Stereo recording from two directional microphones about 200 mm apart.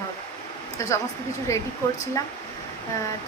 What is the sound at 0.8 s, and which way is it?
Speech, 15° left (ahead or behind).